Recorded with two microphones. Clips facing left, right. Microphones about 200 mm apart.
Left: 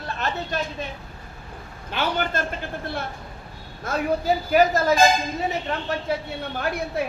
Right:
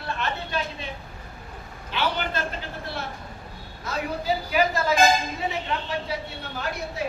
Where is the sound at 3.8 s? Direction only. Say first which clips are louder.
Left 4 dB; 50° left (ahead or behind).